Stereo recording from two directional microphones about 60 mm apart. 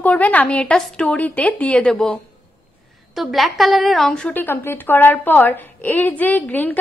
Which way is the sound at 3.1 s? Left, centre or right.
Centre.